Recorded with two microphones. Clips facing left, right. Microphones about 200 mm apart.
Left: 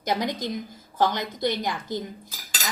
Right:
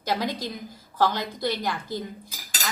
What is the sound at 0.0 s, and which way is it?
A woman's voice, 20° left (ahead or behind).